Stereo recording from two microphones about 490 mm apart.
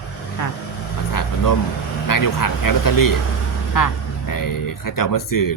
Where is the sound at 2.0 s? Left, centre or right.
Left.